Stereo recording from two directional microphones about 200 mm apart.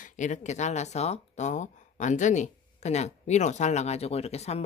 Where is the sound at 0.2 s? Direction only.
35° left (ahead or behind).